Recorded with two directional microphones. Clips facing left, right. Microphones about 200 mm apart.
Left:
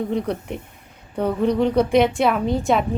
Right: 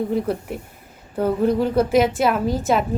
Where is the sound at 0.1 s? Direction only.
5° right (ahead or behind).